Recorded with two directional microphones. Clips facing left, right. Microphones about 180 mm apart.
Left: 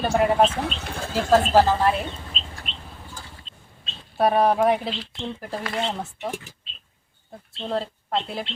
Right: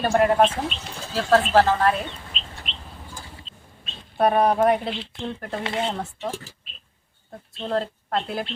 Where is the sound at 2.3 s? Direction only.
40° left (ahead or behind).